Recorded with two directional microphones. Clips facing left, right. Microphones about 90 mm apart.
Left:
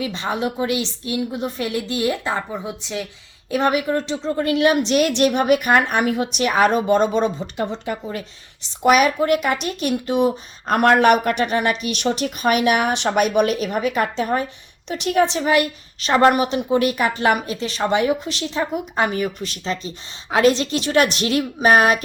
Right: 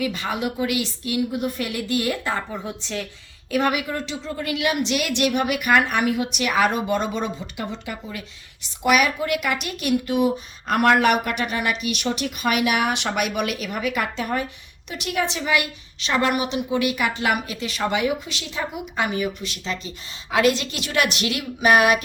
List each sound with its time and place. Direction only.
0.0 s a woman's voice: 25° left (ahead or behind)
3.5 s a woman's voice: 30° left (ahead or behind)